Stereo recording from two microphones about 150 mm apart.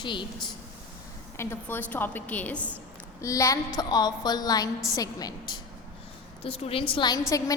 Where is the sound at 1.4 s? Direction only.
15° left (ahead or behind).